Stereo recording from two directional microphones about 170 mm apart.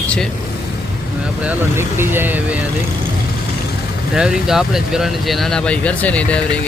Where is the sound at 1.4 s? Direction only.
10° right (ahead or behind).